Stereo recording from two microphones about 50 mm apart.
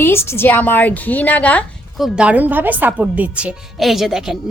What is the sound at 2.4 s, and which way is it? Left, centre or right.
A woman's voice, right.